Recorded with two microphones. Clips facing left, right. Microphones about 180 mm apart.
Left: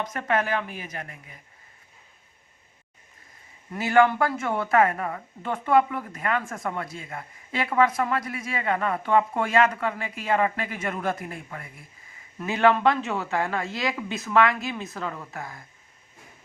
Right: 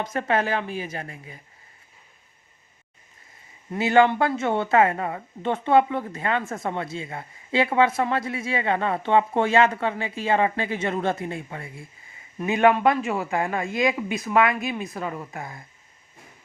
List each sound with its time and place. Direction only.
0.0 s speech: 30° right (ahead or behind)
3.7 s a woman's voice: 25° right (ahead or behind)
12.4 s speech: 15° right (ahead or behind)